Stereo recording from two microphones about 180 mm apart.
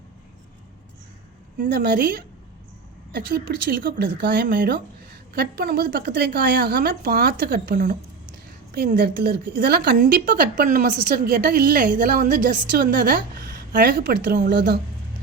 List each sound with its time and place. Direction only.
1.5 s a woman's voice: 55° right (ahead or behind)
3.1 s a woman's voice: 65° right (ahead or behind)
9.0 s a woman's voice: 60° right (ahead or behind)
14.5 s a woman's voice: 75° right (ahead or behind)